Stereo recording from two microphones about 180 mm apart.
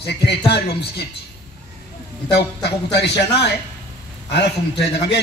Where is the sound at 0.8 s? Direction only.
65° left (ahead or behind).